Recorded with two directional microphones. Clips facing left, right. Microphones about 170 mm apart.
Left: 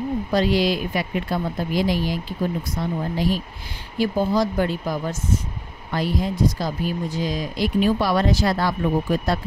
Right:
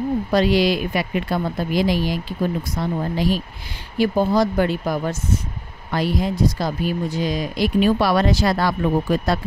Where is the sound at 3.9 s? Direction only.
65° right (ahead or behind); by 8.8 s 85° right.